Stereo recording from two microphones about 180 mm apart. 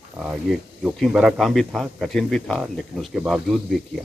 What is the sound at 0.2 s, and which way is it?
Speech, 5° right (ahead or behind).